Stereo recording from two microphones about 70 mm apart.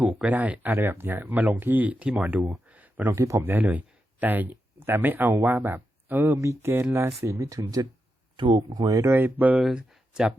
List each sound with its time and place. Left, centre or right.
0.3 s speech: right
2.6 s a sound: right
3.1 s speech: right
3.4 s speech: right
6.3 s speech: right
8.4 s speech: right
9.1 s speech: right
9.7 s speech: centre